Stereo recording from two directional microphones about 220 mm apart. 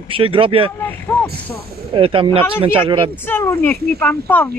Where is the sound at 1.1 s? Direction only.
10° left (ahead or behind).